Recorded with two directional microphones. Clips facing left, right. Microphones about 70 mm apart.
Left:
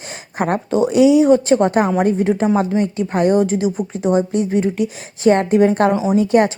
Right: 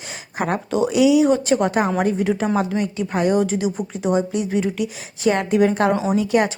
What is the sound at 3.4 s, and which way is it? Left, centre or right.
A woman's voice, left.